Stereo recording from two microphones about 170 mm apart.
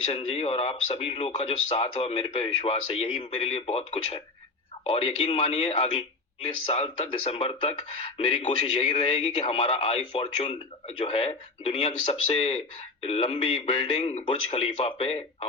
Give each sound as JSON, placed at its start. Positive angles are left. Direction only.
{"t": 0.0, "sound": "speech", "side_deg": 35}